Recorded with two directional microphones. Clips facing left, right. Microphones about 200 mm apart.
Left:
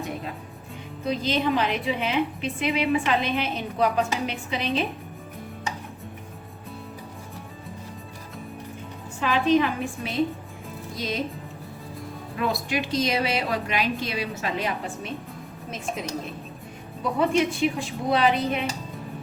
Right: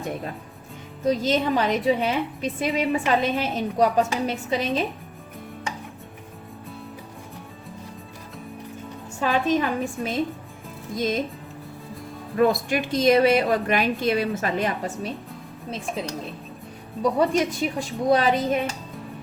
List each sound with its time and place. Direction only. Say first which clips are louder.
1.0 s a woman's voice: right 3 dB; 40° right (ahead or behind)
9.2 s a woman's voice: left 1 dB; 45° right (ahead or behind)
12.4 s a woman's voice: right 6 dB; 50° right (ahead or behind)
17.0 s a woman's voice: right 2 dB; 40° right (ahead or behind)